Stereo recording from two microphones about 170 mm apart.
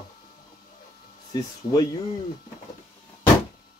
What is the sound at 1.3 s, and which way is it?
Speech, 20° left (ahead or behind).